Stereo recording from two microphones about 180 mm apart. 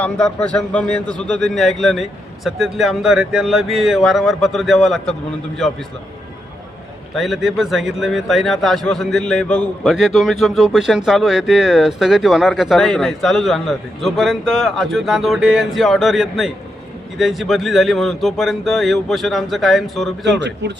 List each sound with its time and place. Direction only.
0.0 s a man's voice: 5° left (ahead or behind)
7.1 s a man's voice: centre (ahead or behind)
20.4 s a man's voice: 70° right (ahead or behind)